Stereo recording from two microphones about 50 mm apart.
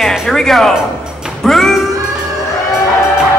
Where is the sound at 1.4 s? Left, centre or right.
Centre.